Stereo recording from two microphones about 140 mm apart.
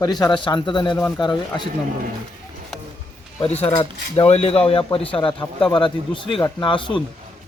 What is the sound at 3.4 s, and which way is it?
Speech, 45° left (ahead or behind).